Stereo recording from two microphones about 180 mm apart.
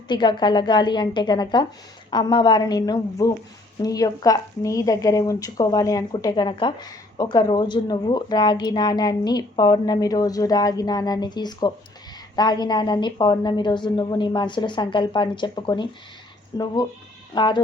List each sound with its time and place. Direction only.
0.1 s a woman's voice: 25° left (ahead or behind)